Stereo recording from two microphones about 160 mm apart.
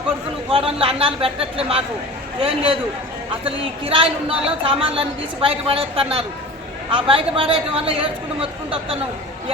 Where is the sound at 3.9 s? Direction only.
35° right (ahead or behind).